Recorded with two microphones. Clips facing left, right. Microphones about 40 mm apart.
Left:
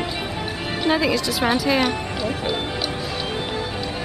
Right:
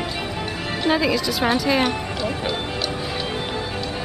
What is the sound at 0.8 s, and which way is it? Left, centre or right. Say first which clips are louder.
Speech: even; centre.